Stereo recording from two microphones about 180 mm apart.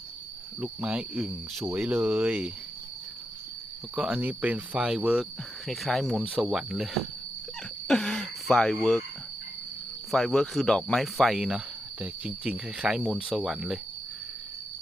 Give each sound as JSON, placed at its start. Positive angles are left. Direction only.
{"t": 0.6, "sound": "speech", "side_deg": -5}
{"t": 3.9, "sound": "speech", "side_deg": -5}
{"t": 7.9, "sound": "a sound", "side_deg": 5}
{"t": 10.1, "sound": "speech", "side_deg": 0}